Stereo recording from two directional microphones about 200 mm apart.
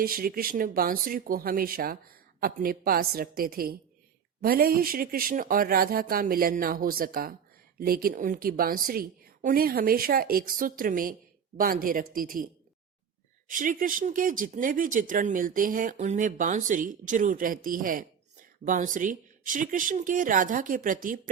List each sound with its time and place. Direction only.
0.0 s speech: 45° right (ahead or behind)
13.5 s speech: 40° right (ahead or behind)